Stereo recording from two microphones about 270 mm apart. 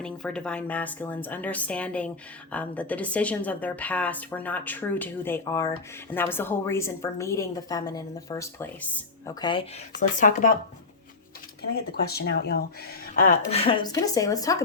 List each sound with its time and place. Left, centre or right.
0.0 s a woman's voice: centre; by 10.5 s left
11.7 s speech: left
13.1 s a woman's voice: left